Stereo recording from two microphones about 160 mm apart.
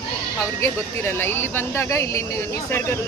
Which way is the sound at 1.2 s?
15° left (ahead or behind).